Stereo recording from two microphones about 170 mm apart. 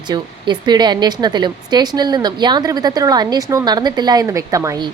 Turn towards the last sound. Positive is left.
turn(degrees=-20)  # may be behind; listen again after turning